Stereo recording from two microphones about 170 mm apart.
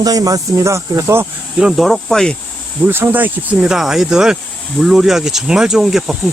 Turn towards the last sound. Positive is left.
turn(degrees=0)  # may be behind; listen again after turning